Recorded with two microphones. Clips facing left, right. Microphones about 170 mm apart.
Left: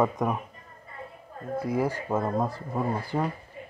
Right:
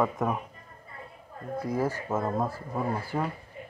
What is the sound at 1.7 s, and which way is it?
Speech, 10° left (ahead or behind).